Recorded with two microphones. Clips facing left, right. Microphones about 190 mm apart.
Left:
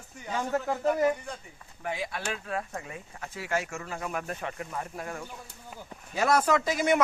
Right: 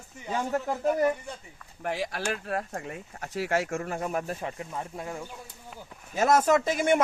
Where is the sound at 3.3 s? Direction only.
80° right.